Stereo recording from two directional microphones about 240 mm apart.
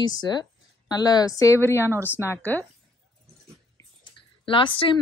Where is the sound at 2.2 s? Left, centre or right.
Centre.